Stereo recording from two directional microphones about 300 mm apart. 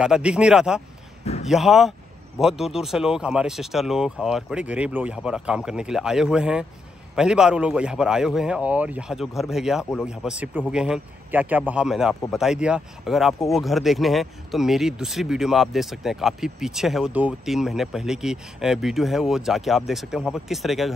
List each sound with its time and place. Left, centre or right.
0.0 s speech: centre
1.2 s a sound: left
1.5 s speech: centre